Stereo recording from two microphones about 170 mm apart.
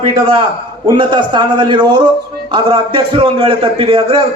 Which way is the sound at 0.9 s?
25° right (ahead or behind).